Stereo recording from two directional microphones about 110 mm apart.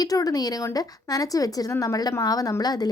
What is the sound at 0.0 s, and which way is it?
A woman's voice, 35° left (ahead or behind).